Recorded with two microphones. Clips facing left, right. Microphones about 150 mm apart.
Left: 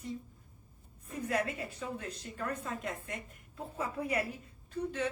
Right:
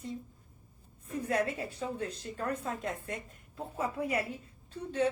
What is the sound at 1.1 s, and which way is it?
A woman's voice, 30° right (ahead or behind).